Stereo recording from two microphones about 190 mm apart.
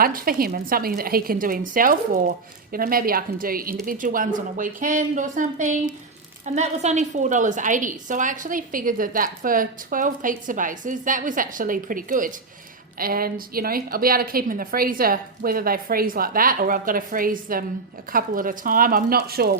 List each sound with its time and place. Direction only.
0.0 s a woman's voice: 50° right (ahead or behind)